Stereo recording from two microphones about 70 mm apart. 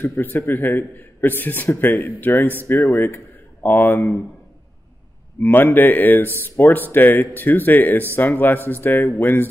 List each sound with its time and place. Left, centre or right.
0.4 s a man's voice: left
5.4 s a man's voice: left